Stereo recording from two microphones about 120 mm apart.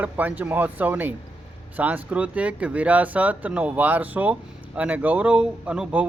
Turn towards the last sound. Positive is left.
turn(degrees=-10)  # may be behind; listen again after turning